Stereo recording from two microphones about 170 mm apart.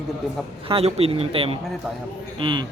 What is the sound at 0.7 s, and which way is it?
A man's voice, 35° right (ahead or behind).